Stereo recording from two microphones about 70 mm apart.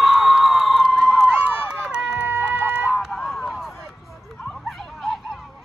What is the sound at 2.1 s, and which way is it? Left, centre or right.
Chicken, right.